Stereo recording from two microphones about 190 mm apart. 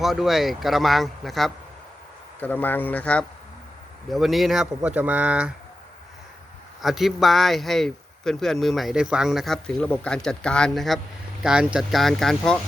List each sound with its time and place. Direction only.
0.0 s speech: centre (ahead or behind)
6.8 s speech: centre (ahead or behind)